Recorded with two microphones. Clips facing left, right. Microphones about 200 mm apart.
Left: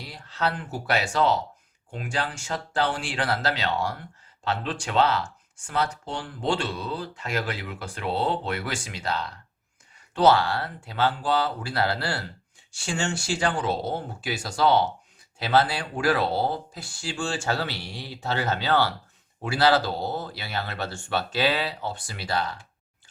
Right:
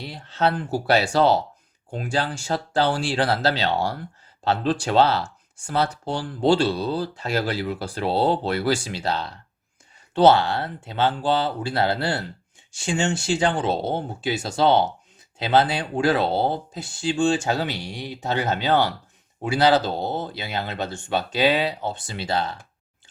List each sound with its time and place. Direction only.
0.0 s speech: 25° right (ahead or behind)